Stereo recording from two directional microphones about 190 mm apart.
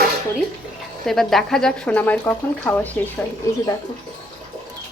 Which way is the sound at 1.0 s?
Centre (ahead or behind).